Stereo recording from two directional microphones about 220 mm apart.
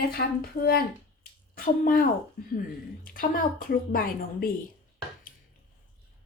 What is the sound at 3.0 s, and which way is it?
A woman's voice, 40° left (ahead or behind).